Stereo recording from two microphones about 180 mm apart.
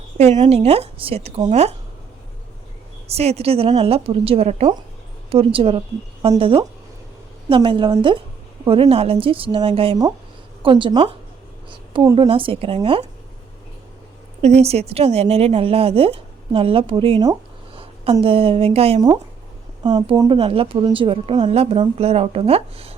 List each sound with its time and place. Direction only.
0.2 s speech: 40° right (ahead or behind)
3.1 s speech: 35° right (ahead or behind)
7.5 s speech: 30° right (ahead or behind)
14.4 s speech: 35° right (ahead or behind)
19.8 s speech: 25° right (ahead or behind)